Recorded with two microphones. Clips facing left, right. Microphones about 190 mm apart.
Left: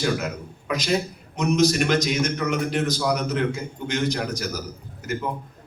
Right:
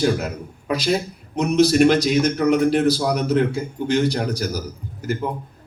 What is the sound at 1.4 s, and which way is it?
A man's voice, 30° right (ahead or behind).